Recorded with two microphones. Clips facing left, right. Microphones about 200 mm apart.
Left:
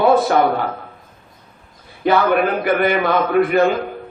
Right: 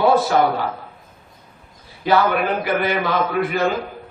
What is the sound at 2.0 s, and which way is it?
A man's voice, 55° left (ahead or behind).